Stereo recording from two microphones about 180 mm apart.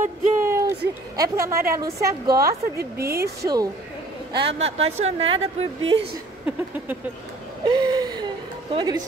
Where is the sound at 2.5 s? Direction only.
60° right (ahead or behind).